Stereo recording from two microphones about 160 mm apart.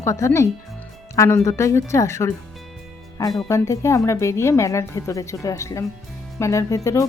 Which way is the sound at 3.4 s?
20° left (ahead or behind).